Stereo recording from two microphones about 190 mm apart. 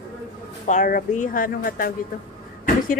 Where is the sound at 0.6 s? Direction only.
45° left (ahead or behind).